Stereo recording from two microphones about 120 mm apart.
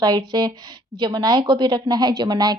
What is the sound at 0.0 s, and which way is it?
A woman's voice, 35° right (ahead or behind).